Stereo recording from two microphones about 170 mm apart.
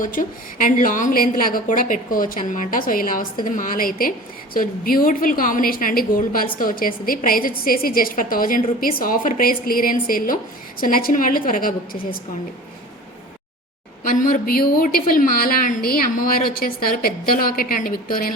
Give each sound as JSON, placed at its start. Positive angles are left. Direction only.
{"t": 0.0, "sound": "a woman's voice", "side_deg": 55}
{"t": 14.0, "sound": "a woman's voice", "side_deg": 55}